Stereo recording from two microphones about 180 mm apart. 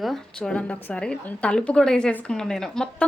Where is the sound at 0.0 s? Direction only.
5° left (ahead or behind).